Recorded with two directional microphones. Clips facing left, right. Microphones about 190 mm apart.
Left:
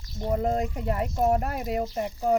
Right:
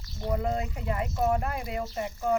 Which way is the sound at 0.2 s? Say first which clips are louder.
Left 4 dB; 35° left (ahead or behind).